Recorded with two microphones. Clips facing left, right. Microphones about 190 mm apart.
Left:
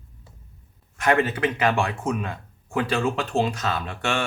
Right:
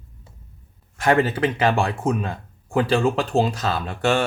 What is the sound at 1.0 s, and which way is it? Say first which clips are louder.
Speech: right 2 dB; 35° right (ahead or behind).